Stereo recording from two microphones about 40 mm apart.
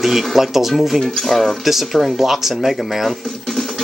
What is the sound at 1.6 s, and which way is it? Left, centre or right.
Speech, centre.